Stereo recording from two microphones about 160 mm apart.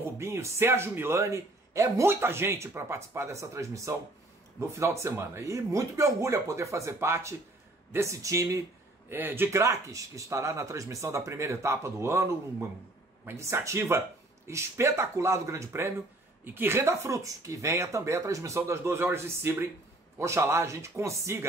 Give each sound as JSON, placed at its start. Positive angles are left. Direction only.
{"t": 0.2, "sound": "a man's voice", "side_deg": -15}